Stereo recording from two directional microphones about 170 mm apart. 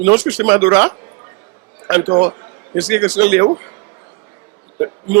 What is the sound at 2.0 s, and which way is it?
Speech, 25° right (ahead or behind).